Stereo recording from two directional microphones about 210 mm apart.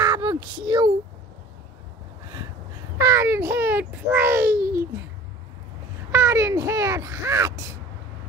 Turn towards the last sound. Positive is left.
turn(degrees=-15)  # may be behind; listen again after turning